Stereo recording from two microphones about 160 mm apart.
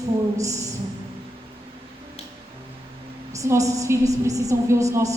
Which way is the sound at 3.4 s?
20° right (ahead or behind).